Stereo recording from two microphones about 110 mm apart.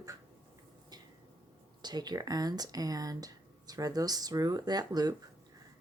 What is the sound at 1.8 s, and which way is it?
Speech, 40° right (ahead or behind).